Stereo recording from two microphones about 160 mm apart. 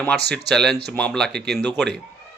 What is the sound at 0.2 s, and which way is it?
Speech, 90° right.